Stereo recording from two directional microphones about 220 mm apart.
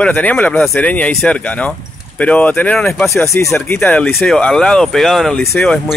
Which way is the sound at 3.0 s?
10° left (ahead or behind).